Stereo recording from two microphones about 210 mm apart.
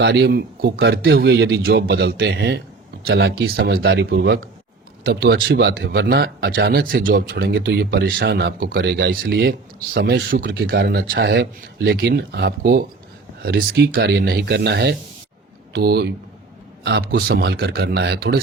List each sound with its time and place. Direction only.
0.0 s speech: 55° right (ahead or behind)